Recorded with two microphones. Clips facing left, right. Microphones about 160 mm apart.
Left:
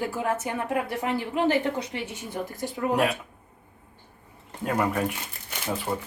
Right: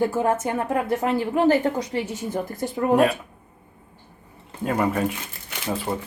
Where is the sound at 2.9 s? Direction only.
Centre (ahead or behind).